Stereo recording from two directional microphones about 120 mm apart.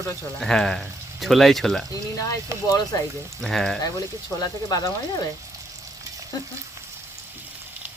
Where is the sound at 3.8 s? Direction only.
30° left (ahead or behind).